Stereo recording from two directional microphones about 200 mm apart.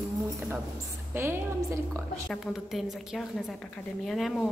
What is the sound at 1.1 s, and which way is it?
Speech, 10° right (ahead or behind).